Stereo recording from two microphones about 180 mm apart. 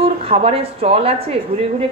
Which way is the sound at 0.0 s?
35° right (ahead or behind).